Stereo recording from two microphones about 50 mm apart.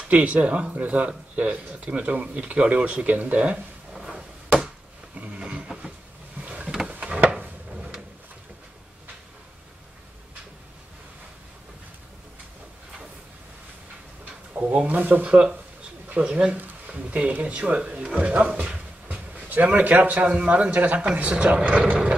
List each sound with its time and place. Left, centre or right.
0.1 s speech: right
3.9 s chop: centre
5.1 s a sound: right
6.4 s boat: right
6.9 s drawer open or close: right
14.6 s a sound: centre
14.9 s a man's voice: right
15.2 s a man's voice: right